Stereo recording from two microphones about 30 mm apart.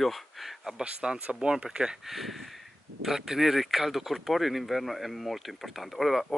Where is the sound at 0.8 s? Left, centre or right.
Right.